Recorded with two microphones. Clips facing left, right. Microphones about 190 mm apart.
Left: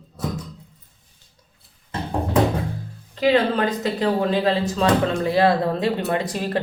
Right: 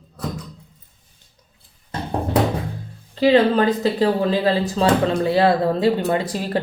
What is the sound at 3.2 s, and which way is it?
Speech, 30° right (ahead or behind).